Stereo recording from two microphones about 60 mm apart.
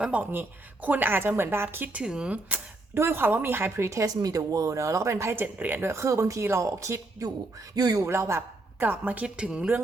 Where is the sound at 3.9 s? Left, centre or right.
Right.